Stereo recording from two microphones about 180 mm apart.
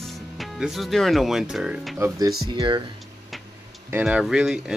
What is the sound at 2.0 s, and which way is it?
Speech, 20° right (ahead or behind).